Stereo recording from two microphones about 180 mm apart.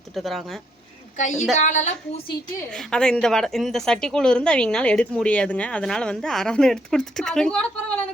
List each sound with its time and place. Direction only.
0.1 s a woman's voice: centre (ahead or behind)
1.1 s a woman's voice: 40° left (ahead or behind)
2.7 s a woman's voice: 5° left (ahead or behind)